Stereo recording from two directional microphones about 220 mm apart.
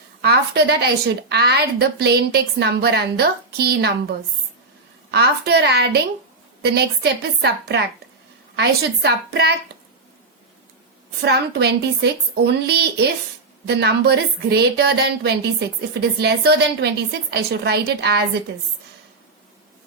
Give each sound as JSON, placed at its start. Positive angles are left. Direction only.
{"t": 0.2, "sound": "speech", "side_deg": -50}
{"t": 5.1, "sound": "speech", "side_deg": -45}
{"t": 11.2, "sound": "speech", "side_deg": -50}